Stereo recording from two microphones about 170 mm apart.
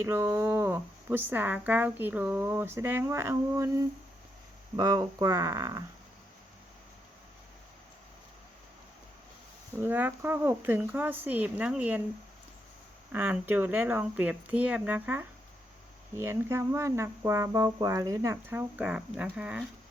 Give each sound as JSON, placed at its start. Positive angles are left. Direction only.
{"t": 0.0, "sound": "speech", "side_deg": -15}
{"t": 4.8, "sound": "speech", "side_deg": -20}
{"t": 9.7, "sound": "speech", "side_deg": -10}
{"t": 13.1, "sound": "speech", "side_deg": -10}